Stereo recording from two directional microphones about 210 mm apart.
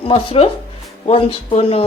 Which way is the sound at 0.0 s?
25° left (ahead or behind).